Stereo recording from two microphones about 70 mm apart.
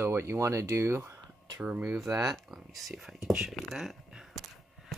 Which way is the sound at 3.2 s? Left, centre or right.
Centre.